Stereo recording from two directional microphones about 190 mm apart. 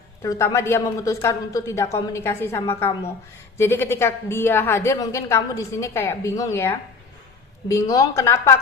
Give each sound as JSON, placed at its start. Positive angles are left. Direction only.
{"t": 0.2, "sound": "a woman's voice", "side_deg": 15}